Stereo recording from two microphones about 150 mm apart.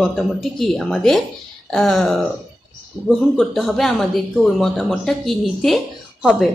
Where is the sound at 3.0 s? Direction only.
20° right (ahead or behind).